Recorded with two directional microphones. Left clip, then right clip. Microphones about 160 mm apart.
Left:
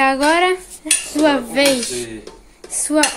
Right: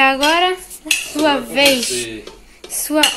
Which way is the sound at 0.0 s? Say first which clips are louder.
Right 1 dB; 15° left (ahead or behind).